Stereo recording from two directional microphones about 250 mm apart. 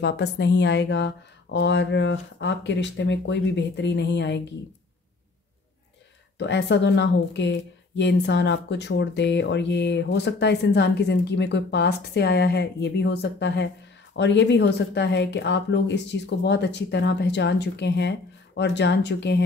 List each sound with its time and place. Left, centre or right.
0.0 s a woman's voice: left
6.3 s a woman's voice: left